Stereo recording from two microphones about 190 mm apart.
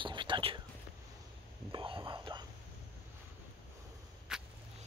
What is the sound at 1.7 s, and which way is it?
Whispering, 25° right (ahead or behind).